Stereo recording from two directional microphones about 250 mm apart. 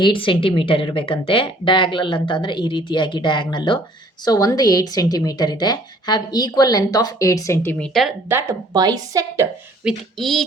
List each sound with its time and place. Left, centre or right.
0.0 s a woman's voice: centre
8.3 s a woman's voice: centre
10.2 s speech: centre